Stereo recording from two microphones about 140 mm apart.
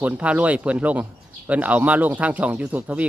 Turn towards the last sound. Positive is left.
turn(degrees=-10)  # may be behind; listen again after turning